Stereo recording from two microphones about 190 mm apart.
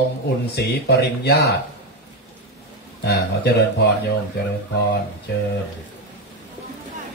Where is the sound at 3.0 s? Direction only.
60° left (ahead or behind).